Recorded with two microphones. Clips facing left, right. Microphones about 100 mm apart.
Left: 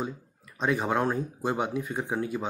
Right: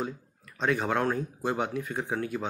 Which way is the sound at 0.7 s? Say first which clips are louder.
Left 1 dB; 15° left (ahead or behind).